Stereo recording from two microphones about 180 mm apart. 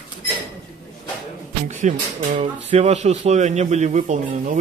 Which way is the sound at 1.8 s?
40° right (ahead or behind).